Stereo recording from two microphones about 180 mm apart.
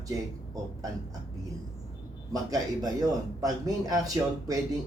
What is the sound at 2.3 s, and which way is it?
Speech, 20° right (ahead or behind).